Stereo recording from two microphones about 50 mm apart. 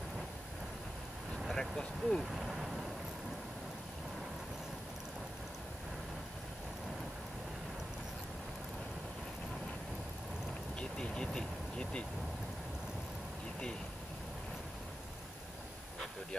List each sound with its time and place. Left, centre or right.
1.5 s speech: centre
2.3 s vehicle: centre
10.8 s vehicle: centre